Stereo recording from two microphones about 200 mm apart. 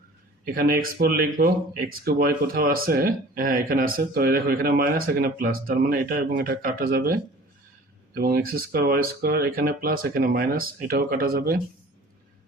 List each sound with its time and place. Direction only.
0.4 s speech: 45° right (ahead or behind)